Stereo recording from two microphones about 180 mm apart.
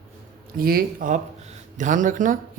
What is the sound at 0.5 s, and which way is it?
Speech, 55° right (ahead or behind).